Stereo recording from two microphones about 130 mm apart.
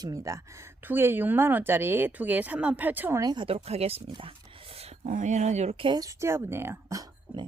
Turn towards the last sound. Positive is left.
turn(degrees=-30)  # may be behind; listen again after turning